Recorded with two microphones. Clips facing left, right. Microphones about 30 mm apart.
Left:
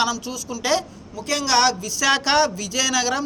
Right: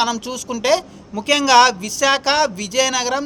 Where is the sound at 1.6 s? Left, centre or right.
Right.